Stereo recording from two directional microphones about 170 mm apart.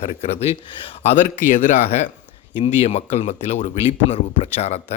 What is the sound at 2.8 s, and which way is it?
Speech, 35° left (ahead or behind).